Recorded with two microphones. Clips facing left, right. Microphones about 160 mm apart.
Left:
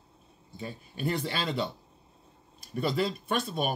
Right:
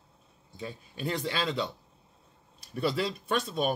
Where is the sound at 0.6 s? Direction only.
5° left (ahead or behind).